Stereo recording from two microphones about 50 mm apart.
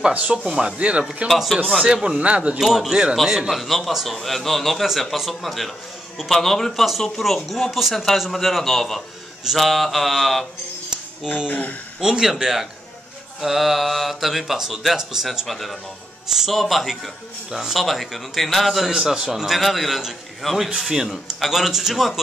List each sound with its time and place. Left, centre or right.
0.1 s speech: right
0.5 s a man's voice: centre
1.0 s a man's voice: centre
2.1 s speech: right
2.6 s a man's voice: centre
11.4 s speech: left
12.0 s a man's voice: centre
15.4 s a man's voice: centre
18.9 s a man's voice: centre